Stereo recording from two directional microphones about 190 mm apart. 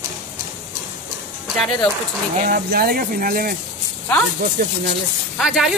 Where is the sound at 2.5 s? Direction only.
55° right (ahead or behind).